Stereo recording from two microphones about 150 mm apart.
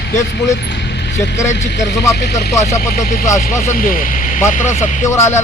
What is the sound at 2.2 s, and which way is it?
Speech, 90° left.